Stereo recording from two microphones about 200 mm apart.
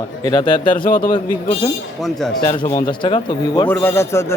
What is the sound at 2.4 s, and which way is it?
Speech, 25° left (ahead or behind).